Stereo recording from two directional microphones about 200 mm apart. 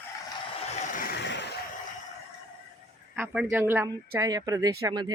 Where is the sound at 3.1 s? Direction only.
5° right (ahead or behind).